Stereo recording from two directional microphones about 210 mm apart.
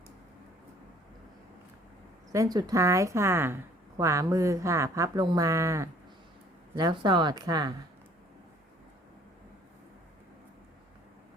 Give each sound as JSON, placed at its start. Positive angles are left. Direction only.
{"t": 2.3, "sound": "a woman's voice", "side_deg": -15}